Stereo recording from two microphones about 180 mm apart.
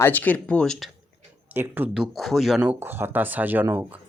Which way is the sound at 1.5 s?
10° right (ahead or behind).